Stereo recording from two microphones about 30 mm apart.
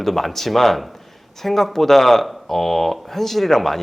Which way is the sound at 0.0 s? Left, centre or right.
Centre.